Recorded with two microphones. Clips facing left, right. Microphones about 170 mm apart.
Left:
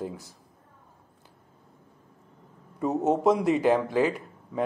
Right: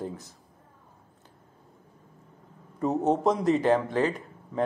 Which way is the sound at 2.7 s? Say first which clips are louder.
Even; centre (ahead or behind).